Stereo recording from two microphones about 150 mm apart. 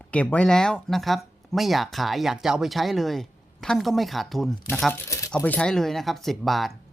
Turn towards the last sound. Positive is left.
turn(degrees=0)  # may be behind; listen again after turning